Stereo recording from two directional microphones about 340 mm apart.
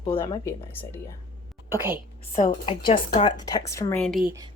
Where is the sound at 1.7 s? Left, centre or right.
Centre.